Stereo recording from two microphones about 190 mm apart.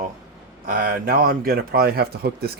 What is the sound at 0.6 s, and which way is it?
A man's voice, 45° right (ahead or behind).